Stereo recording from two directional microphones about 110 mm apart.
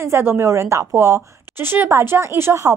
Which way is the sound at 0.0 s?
20° right (ahead or behind).